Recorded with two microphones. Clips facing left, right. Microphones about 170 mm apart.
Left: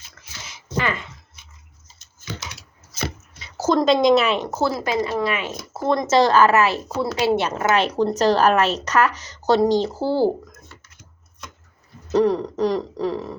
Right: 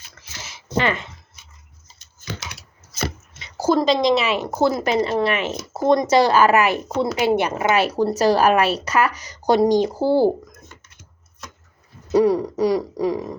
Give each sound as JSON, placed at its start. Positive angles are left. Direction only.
{"t": 3.6, "sound": "speech", "side_deg": -5}
{"t": 4.5, "sound": "speech", "side_deg": -20}
{"t": 7.1, "sound": "speech", "side_deg": -10}
{"t": 12.1, "sound": "speech", "side_deg": -10}